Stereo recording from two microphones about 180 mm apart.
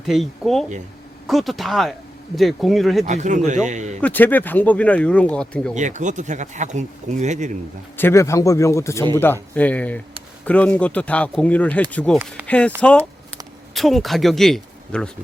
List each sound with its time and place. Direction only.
0.0 s speech: centre (ahead or behind)
3.0 s speech: 40° right (ahead or behind)
4.0 s speech: 10° left (ahead or behind)
5.7 s speech: 45° right (ahead or behind)
7.9 s speech: 15° left (ahead or behind)
12.8 s a sound: 5° left (ahead or behind)